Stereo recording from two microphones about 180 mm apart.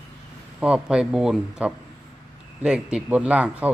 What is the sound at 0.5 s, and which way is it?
Speech, 5° right (ahead or behind).